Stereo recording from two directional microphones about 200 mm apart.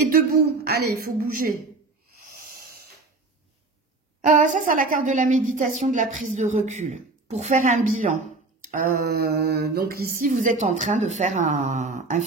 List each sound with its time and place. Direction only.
0.5 s speech: 50° right (ahead or behind)
2.1 s owl: 45° right (ahead or behind)
4.5 s a woman's voice: 40° right (ahead or behind)